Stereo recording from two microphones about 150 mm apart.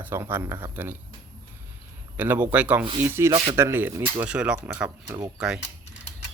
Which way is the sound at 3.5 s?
15° right (ahead or behind).